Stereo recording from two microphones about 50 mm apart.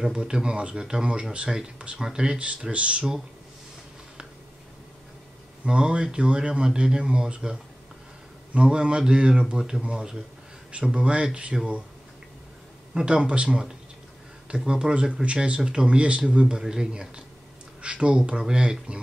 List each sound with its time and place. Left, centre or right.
0.0 s speech: centre
5.7 s speech: centre
8.5 s speech: right
12.9 s speech: centre
14.7 s speech: centre